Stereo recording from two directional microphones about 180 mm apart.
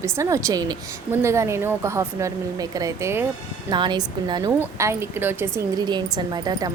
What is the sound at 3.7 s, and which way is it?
A woman's voice, 25° right (ahead or behind).